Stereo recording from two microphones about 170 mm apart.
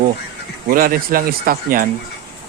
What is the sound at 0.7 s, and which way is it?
Speech, 55° right (ahead or behind).